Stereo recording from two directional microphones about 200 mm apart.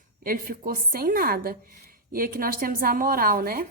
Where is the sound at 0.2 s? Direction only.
45° right (ahead or behind).